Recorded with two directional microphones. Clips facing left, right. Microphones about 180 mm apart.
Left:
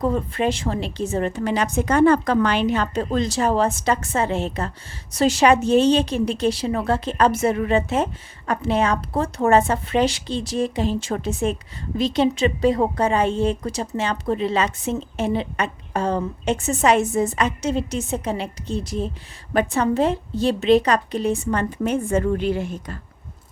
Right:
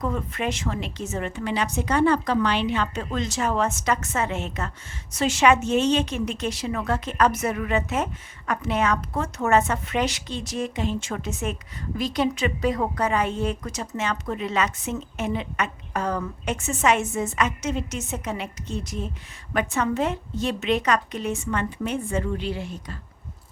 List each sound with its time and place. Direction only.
0.0 s a woman's voice: 30° left (ahead or behind); by 23.0 s 50° left (ahead or behind)